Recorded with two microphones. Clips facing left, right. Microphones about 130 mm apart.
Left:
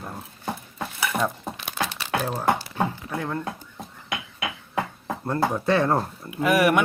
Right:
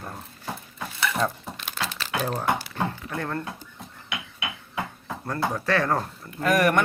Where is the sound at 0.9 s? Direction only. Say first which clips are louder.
Even; 10° left (ahead or behind).